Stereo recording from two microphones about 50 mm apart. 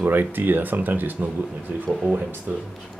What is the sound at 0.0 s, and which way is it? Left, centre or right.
Speech, right.